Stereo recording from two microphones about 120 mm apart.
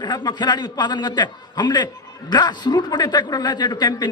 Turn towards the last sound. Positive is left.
turn(degrees=35)  # may be behind; listen again after turning